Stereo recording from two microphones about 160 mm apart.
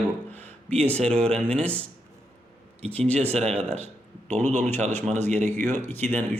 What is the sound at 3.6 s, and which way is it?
Speech, 40° right (ahead or behind).